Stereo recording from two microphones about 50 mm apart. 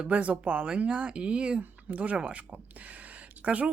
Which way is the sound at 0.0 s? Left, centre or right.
Right.